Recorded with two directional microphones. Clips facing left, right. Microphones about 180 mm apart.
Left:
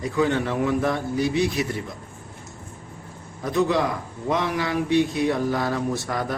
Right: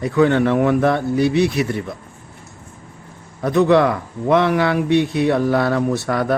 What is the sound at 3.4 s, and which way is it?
A man's voice, 65° right (ahead or behind).